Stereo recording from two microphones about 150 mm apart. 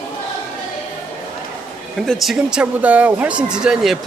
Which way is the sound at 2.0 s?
Centre (ahead or behind).